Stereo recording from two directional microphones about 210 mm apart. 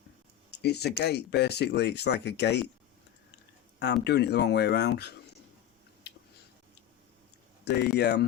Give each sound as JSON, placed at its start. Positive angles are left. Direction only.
{"t": 0.6, "sound": "speech", "side_deg": 50}
{"t": 4.0, "sound": "speech", "side_deg": 50}
{"t": 6.0, "sound": "a sound", "side_deg": 55}
{"t": 7.6, "sound": "speech", "side_deg": 50}